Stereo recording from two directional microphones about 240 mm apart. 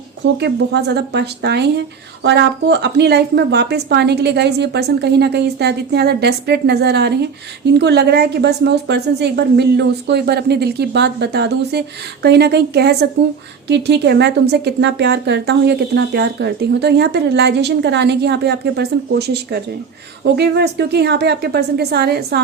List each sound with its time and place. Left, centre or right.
0.3 s speech: right